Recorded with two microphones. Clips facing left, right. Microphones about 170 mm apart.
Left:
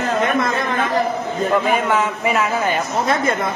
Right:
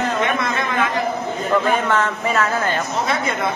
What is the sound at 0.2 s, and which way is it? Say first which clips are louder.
Chatter: left 2 dB; 40° left (ahead or behind).